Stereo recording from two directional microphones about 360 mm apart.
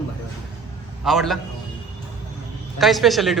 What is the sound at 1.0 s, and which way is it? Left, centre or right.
Speech, centre.